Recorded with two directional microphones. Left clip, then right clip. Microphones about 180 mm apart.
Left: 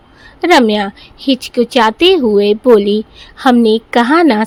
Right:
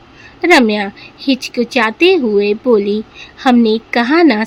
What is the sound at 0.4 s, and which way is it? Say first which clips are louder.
A woman's voice: left 1 dB; 45° left (ahead or behind).